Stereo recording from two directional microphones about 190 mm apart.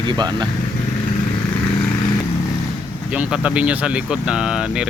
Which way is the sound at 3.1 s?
5° right (ahead or behind).